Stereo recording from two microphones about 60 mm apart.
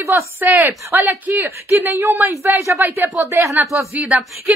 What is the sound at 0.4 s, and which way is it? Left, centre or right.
A woman's voice, right.